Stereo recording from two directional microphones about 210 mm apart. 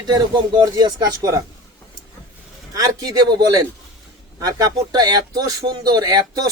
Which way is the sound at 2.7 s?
20° right (ahead or behind).